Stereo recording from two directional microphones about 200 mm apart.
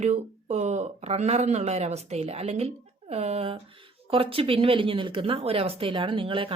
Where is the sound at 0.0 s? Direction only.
35° right (ahead or behind).